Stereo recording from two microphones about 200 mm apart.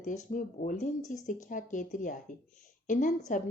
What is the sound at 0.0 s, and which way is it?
Speech, 40° left (ahead or behind).